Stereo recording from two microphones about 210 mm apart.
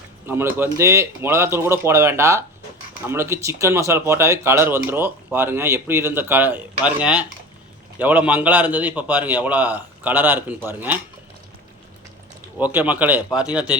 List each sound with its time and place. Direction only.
0.3 s speech: 10° right (ahead or behind)
12.5 s speech: 5° right (ahead or behind)